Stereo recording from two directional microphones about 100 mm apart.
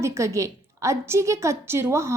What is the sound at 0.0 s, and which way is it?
A woman's voice, 30° right (ahead or behind).